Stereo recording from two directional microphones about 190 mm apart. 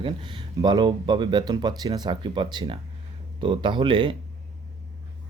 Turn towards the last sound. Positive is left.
turn(degrees=-25)  # may be behind; listen again after turning